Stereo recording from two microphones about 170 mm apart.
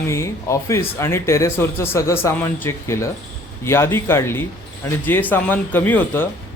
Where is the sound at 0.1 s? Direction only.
15° left (ahead or behind).